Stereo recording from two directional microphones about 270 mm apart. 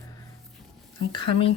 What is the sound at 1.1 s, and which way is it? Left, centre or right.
Speech, centre.